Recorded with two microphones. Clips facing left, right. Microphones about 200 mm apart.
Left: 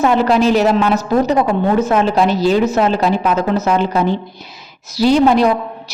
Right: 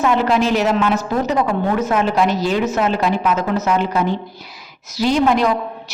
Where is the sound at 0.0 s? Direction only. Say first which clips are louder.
Left 3 dB; 35° left (ahead or behind).